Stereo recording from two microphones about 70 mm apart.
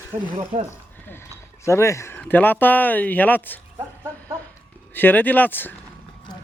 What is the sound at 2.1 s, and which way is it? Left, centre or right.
Speech, left.